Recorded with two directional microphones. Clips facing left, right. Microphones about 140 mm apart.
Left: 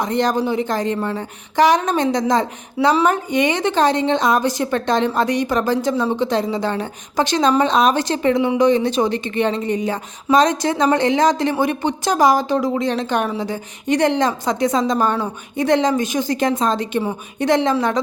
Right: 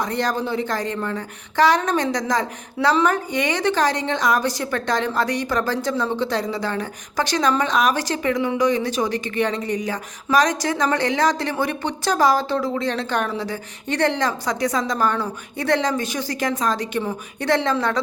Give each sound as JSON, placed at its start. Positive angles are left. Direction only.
{"t": 0.0, "sound": "a woman's voice", "side_deg": 20}